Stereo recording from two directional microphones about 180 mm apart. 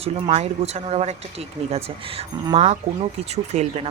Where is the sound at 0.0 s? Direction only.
35° right (ahead or behind).